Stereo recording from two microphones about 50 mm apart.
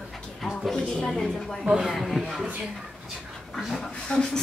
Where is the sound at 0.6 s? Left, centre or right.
Centre.